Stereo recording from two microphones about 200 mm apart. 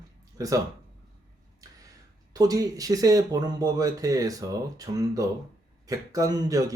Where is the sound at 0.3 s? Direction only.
15° right (ahead or behind).